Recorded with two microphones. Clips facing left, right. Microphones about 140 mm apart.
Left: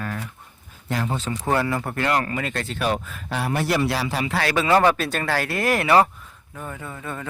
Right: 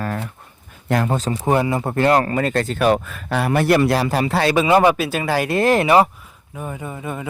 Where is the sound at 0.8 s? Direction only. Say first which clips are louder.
Right 6 dB; 60° right (ahead or behind).